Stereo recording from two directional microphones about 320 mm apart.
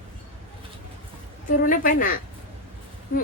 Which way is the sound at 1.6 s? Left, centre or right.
Left.